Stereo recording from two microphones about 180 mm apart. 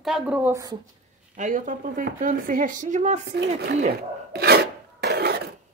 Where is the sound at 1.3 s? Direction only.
45° right (ahead or behind).